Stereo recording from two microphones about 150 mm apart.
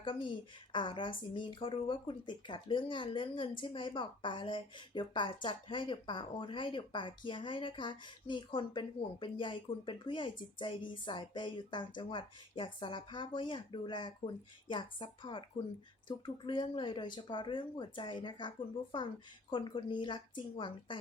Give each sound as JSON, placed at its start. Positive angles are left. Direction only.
{"t": 0.0, "sound": "speech", "side_deg": 35}